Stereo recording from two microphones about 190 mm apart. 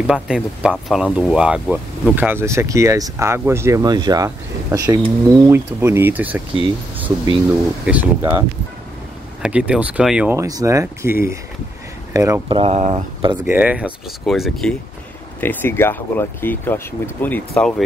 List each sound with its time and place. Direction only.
0.0 s speech: 5° right (ahead or behind)
7.4 s speech: 10° right (ahead or behind)
10.3 s speech: 15° right (ahead or behind)
13.4 s speech: 10° right (ahead or behind)
15.4 s speech: 10° left (ahead or behind)